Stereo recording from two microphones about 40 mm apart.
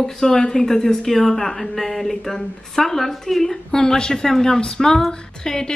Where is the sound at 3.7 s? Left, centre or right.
Centre.